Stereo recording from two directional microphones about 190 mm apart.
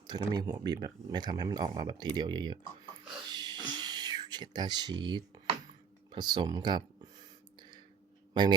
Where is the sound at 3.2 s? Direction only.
20° right (ahead or behind).